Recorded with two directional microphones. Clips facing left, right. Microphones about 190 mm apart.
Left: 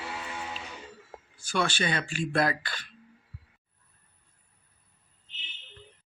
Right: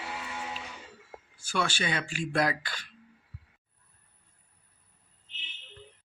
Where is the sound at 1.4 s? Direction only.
10° right (ahead or behind).